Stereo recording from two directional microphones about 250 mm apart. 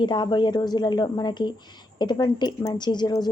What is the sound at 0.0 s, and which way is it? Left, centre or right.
Speech, centre.